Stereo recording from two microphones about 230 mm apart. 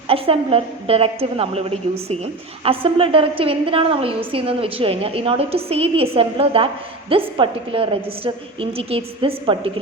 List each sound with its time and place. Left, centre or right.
0.1 s a woman's voice: right